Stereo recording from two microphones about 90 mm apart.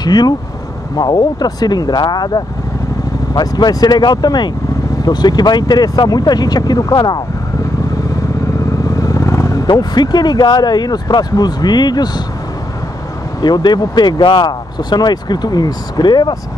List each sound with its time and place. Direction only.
0.0 s speech: 50° left (ahead or behind)
8.8 s vehicle: 40° left (ahead or behind)
9.7 s speech: 50° left (ahead or behind)
13.4 s speech: 55° left (ahead or behind)